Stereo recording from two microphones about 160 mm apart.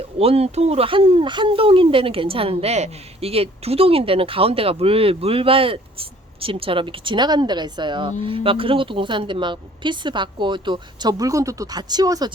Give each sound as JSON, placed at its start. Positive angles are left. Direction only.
{"t": 0.0, "sound": "speech", "side_deg": -40}